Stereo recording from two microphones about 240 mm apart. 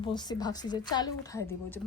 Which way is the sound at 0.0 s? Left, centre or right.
Centre.